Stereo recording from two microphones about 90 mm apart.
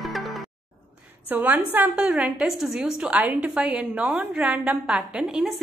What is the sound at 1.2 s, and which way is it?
A woman's voice, 20° right (ahead or behind).